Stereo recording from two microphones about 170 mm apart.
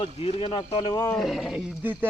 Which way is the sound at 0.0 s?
35° left (ahead or behind).